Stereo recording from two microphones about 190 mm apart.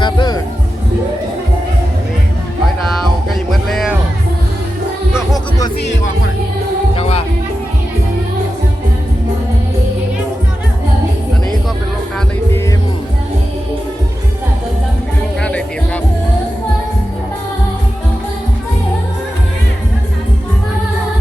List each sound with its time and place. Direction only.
0.0 s speech: 20° left (ahead or behind)
3.2 s music: centre (ahead or behind)
5.8 s speech: 65° left (ahead or behind)
6.9 s music: 30° left (ahead or behind)
15.4 s music: 5° left (ahead or behind)